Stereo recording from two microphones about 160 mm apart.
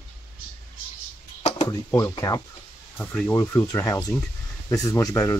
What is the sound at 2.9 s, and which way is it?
Speech, 10° left (ahead or behind).